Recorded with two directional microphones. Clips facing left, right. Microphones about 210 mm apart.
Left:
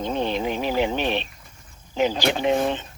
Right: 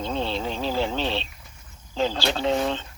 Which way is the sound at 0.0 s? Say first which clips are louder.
Left 3 dB; 15° left (ahead or behind).